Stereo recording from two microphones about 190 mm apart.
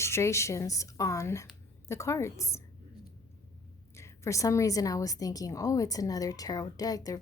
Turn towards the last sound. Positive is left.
turn(degrees=20)  # may be behind; listen again after turning